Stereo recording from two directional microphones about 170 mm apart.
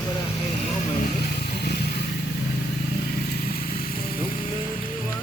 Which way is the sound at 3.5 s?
60° left (ahead or behind).